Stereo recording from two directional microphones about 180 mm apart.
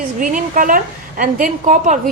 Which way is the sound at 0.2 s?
50° right (ahead or behind).